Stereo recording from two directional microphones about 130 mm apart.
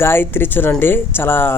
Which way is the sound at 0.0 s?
15° left (ahead or behind).